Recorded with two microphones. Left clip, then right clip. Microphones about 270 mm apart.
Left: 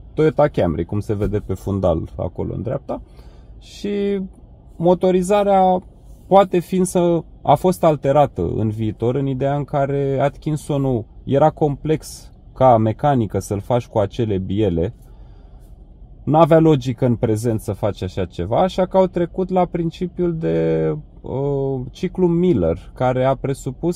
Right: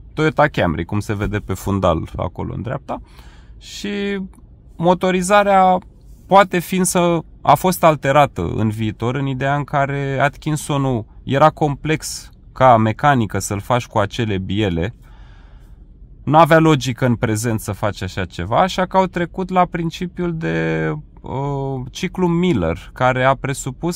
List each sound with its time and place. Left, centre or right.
0.1 s speech: right
3.6 s speech: right
7.0 s speech: right
7.4 s speech: right
16.3 s speech: right
21.5 s speech: right
21.9 s speech: right